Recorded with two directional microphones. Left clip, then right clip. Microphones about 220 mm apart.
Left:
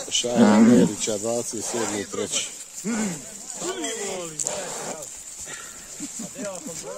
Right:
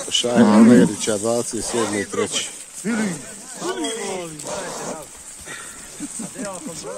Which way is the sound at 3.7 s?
55° left (ahead or behind).